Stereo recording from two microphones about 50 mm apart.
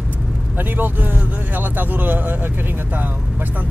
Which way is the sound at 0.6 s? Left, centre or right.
Right.